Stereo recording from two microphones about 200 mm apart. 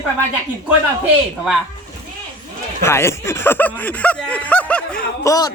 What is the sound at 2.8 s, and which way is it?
A man's voice, 15° left (ahead or behind).